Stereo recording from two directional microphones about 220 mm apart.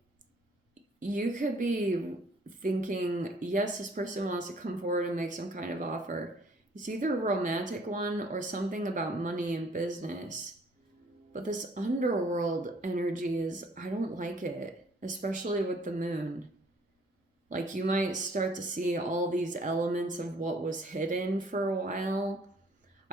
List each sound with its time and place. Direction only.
1.0 s a woman's voice: 35° right (ahead or behind)
11.4 s a woman's voice: 35° right (ahead or behind)
17.5 s a woman's voice: 35° right (ahead or behind)